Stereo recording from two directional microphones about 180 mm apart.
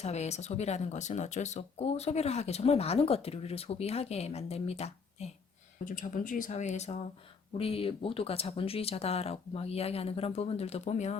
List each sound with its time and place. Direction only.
0.0 s speech: 35° left (ahead or behind)
5.8 s speech: 50° left (ahead or behind)